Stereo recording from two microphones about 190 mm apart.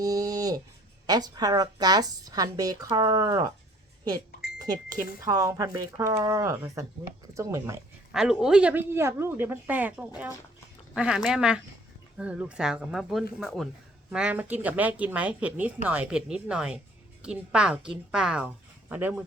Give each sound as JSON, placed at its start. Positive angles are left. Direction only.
{"t": 0.0, "sound": "a sound", "side_deg": -20}
{"t": 1.0, "sound": "speech", "side_deg": -20}
{"t": 5.2, "sound": "speech", "side_deg": -15}
{"t": 8.1, "sound": "speech", "side_deg": -5}
{"t": 10.9, "sound": "a woman's voice", "side_deg": -5}